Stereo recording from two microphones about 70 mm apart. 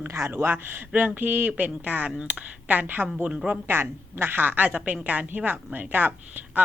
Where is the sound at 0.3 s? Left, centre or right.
Right.